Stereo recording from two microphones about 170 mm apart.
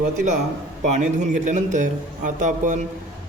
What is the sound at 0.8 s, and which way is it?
A man's voice, 45° right (ahead or behind).